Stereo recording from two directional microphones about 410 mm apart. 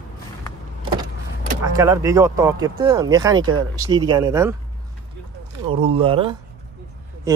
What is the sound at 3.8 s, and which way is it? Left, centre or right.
Speech, centre.